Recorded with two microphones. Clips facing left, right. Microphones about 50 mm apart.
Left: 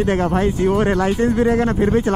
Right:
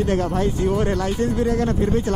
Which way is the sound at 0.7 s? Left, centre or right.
Left.